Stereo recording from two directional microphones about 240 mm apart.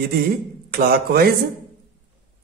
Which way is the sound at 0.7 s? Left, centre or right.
Right.